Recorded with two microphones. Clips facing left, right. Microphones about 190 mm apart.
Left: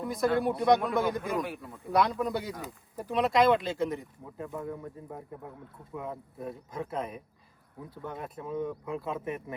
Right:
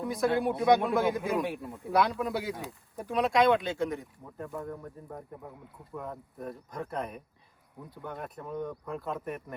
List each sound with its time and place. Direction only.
0.0 s speech: centre (ahead or behind)
1.5 s speech: 25° right (ahead or behind)
1.9 s speech: centre (ahead or behind)